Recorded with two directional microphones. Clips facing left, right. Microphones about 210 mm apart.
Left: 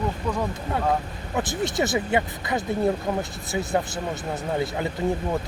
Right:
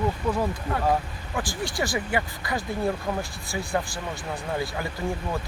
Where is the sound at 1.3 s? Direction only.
20° left (ahead or behind).